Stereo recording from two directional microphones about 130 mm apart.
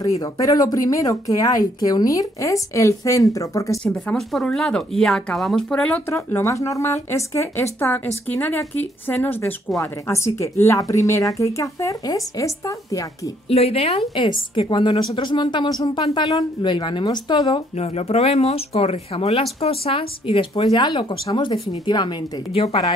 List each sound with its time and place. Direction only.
0.0 s a woman's voice: 25° left (ahead or behind)
3.8 s speech: 5° left (ahead or behind)
6.0 s a woman's voice: 20° left (ahead or behind)
13.5 s speech: 50° left (ahead or behind)
14.1 s a woman's voice: 40° left (ahead or behind)
17.7 s a woman's voice: 50° left (ahead or behind); by 22.1 s 35° left (ahead or behind)
22.5 s speech: 50° left (ahead or behind)